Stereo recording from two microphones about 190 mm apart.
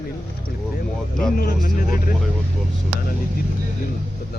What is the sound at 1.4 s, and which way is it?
Speech, 45° left (ahead or behind).